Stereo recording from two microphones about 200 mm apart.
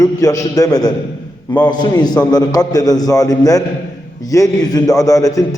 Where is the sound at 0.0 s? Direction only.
15° left (ahead or behind).